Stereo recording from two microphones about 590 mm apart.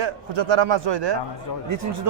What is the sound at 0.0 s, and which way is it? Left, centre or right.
Speech, right.